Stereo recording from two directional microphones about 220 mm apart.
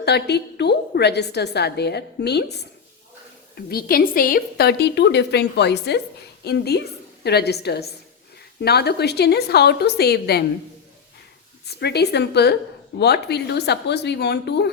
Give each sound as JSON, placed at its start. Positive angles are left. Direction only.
{"t": 0.0, "sound": "a woman's voice", "side_deg": 50}
{"t": 11.6, "sound": "a woman's voice", "side_deg": 50}